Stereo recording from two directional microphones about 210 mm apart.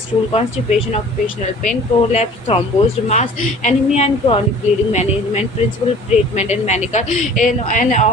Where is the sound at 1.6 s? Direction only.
30° left (ahead or behind).